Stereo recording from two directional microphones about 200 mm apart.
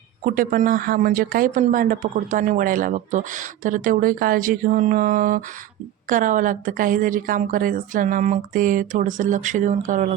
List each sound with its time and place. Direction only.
0.3 s speech: 40° right (ahead or behind)